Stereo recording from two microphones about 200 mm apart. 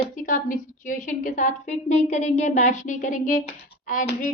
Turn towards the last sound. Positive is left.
turn(degrees=45)  # may be behind; listen again after turning